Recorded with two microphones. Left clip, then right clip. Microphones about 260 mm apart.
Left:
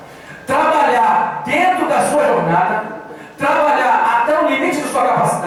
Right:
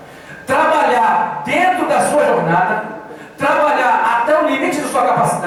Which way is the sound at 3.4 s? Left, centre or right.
Centre.